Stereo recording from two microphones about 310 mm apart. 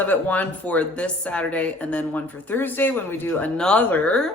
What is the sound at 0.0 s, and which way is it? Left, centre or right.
Speech, centre.